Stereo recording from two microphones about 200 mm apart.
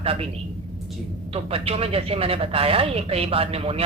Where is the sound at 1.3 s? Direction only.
30° right (ahead or behind).